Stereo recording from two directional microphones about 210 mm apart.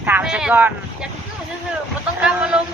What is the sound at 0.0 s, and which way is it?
Speech, 5° right (ahead or behind).